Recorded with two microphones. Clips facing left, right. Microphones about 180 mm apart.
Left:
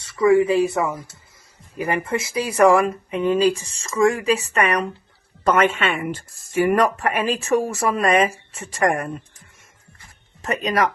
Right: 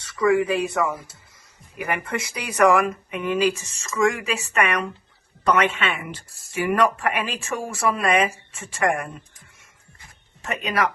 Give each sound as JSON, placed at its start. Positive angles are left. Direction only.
{"t": 0.0, "sound": "speech", "side_deg": 25}
{"t": 10.4, "sound": "speech", "side_deg": 35}